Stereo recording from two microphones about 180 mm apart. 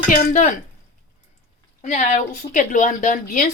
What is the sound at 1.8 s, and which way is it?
Speech, 45° left (ahead or behind).